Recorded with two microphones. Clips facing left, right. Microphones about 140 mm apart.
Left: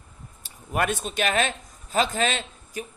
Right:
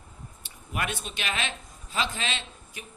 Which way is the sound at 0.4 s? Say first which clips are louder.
Left 7 dB; 45° left (ahead or behind).